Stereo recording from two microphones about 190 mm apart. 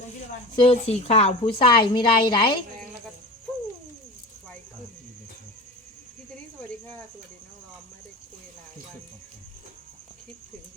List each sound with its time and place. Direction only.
0.6 s a woman's voice: 35° left (ahead or behind)